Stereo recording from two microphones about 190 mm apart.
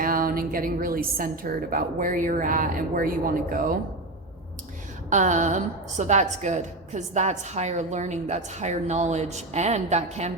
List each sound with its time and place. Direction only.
0.0 s a woman's voice: 50° right (ahead or behind)
5.0 s a woman's voice: 40° right (ahead or behind)